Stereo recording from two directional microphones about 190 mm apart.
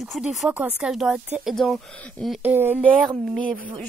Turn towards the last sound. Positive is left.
turn(degrees=-5)  # may be behind; listen again after turning